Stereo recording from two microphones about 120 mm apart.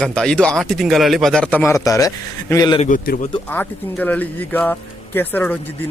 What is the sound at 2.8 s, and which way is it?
Speech, 80° left.